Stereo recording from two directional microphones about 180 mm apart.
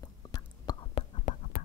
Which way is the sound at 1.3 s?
45° left (ahead or behind).